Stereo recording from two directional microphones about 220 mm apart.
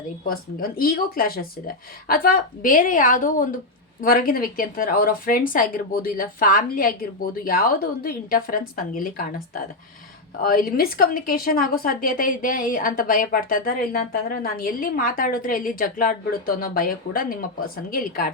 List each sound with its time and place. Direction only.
0.3 s a woman's voice: 40° left (ahead or behind)
10.4 s a woman's voice: 40° left (ahead or behind)